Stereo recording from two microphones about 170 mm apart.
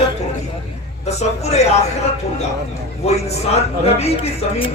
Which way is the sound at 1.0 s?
40° left (ahead or behind).